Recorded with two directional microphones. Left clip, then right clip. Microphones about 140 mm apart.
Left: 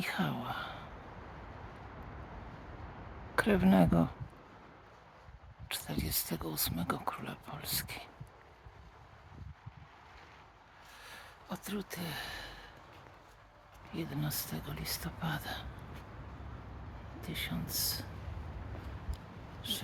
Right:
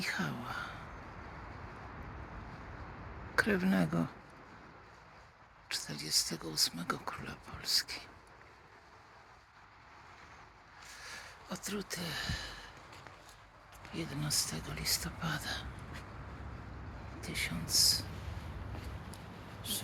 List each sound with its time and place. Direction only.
0.0 s a sound: 40° left (ahead or behind)
3.3 s speech: 35° left (ahead or behind)
5.6 s speech: 40° left (ahead or behind)
11.0 s a sound: 35° left (ahead or behind)
13.9 s speech: 45° left (ahead or behind)
17.2 s speech: 50° left (ahead or behind)
19.6 s speech: 55° left (ahead or behind)